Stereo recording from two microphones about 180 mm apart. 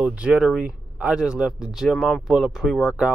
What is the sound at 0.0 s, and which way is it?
Speech, 5° right (ahead or behind).